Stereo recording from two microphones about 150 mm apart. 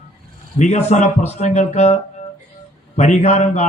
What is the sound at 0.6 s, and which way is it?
Speech, 50° left (ahead or behind).